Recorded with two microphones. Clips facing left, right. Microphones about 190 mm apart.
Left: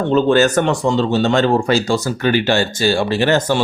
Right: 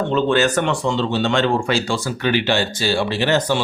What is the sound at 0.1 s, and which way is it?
Speech, 45° left (ahead or behind).